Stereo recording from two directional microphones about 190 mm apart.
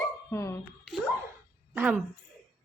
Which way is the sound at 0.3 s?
15° left (ahead or behind).